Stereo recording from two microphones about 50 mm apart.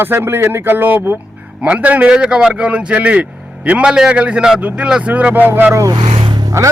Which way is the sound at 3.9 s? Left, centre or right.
Centre.